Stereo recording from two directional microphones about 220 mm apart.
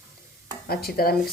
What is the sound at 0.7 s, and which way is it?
Speech, 45° left (ahead or behind).